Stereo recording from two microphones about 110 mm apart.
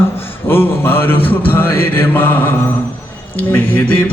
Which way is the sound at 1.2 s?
55° left (ahead or behind).